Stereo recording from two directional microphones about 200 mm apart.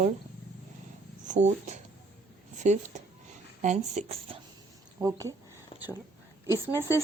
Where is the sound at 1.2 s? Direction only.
40° right (ahead or behind).